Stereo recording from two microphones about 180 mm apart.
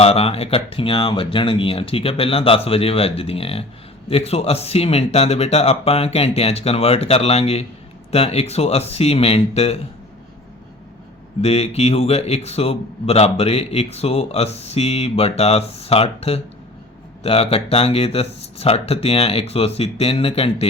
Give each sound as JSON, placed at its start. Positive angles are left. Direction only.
{"t": 0.0, "sound": "a man's voice", "side_deg": 35}
{"t": 11.3, "sound": "a man's voice", "side_deg": 35}